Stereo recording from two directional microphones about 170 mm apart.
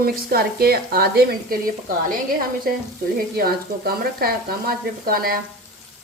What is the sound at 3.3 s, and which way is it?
Speech, 60° right (ahead or behind).